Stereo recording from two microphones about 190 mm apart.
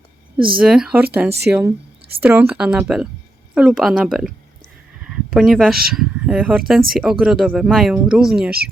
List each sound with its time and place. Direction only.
0.3 s speech: 25° right (ahead or behind)
0.6 s speech: 5° right (ahead or behind)
8.4 s speech: 55° right (ahead or behind)